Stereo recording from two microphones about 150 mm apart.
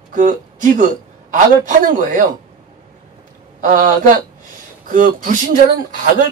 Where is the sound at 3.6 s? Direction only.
60° right (ahead or behind).